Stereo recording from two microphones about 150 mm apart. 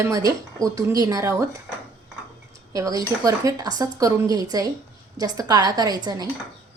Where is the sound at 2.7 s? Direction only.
25° right (ahead or behind).